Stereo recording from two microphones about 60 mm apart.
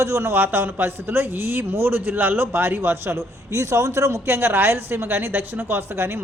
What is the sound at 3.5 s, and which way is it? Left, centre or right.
Speech, right.